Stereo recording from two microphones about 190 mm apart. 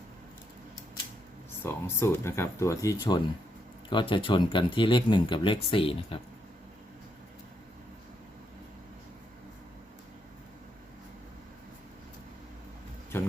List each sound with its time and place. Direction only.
1.6 s speech: 10° left (ahead or behind); by 6.1 s 30° left (ahead or behind)